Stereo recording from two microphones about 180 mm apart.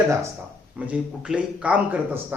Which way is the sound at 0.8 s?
5° right (ahead or behind).